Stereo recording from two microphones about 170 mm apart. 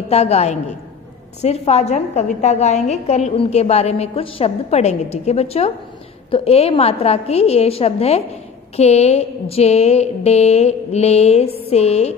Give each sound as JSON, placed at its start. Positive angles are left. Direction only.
{"t": 0.1, "sound": "a woman's voice", "side_deg": 40}